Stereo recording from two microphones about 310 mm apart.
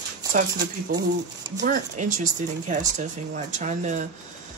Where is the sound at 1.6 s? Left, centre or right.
Right.